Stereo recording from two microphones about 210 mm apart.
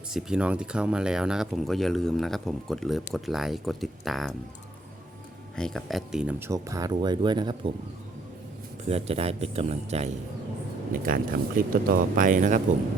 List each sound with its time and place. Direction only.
0.1 s speech: 5° right (ahead or behind)
5.5 s speech: 5° left (ahead or behind); by 7.7 s 20° right (ahead or behind)
8.8 s speech: 30° right (ahead or behind)
11.0 s speech: 40° right (ahead or behind)